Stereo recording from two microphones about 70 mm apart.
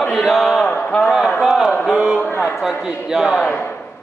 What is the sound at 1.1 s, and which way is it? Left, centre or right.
Speech, centre.